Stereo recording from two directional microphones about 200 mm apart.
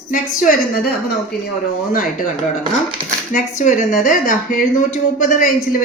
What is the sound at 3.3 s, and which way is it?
A woman's voice, 40° left (ahead or behind).